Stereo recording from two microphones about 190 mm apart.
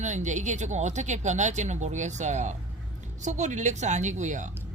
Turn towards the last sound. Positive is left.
turn(degrees=-40)  # may be behind; listen again after turning